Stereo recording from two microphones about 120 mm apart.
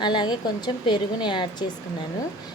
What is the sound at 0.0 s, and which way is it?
Speech, 40° left (ahead or behind).